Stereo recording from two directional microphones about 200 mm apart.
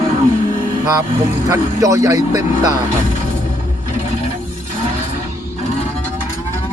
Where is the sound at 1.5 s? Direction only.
15° right (ahead or behind).